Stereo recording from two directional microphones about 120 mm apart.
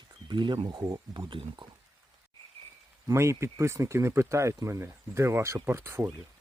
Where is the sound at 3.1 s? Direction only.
25° right (ahead or behind).